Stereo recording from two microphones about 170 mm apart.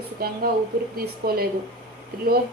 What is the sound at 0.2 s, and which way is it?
A woman's voice, 60° right (ahead or behind).